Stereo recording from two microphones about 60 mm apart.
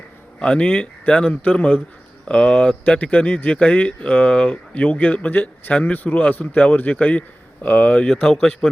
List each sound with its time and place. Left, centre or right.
0.3 s speech: centre
8.6 s a man's voice: centre